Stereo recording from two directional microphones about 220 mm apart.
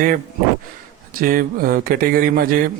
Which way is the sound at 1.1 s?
40° right (ahead or behind).